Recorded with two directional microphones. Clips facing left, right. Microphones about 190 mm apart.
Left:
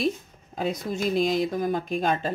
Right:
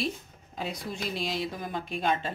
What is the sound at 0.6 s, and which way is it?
Speech, 45° left (ahead or behind).